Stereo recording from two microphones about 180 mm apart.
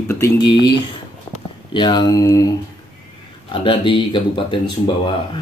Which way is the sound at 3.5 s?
30° left (ahead or behind).